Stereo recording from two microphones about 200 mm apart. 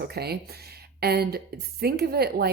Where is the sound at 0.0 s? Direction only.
55° right (ahead or behind).